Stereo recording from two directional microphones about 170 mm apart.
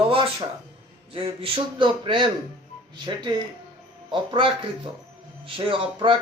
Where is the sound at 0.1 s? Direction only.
30° right (ahead or behind).